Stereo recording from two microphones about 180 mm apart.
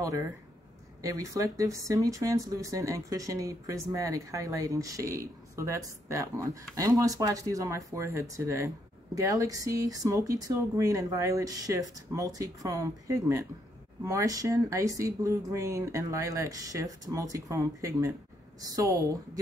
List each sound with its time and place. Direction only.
1.0 s speech: 20° right (ahead or behind)